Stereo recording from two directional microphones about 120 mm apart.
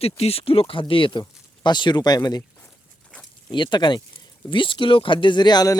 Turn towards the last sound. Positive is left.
turn(degrees=35)  # may be behind; listen again after turning